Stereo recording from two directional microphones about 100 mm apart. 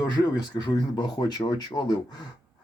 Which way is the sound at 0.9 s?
40° left (ahead or behind).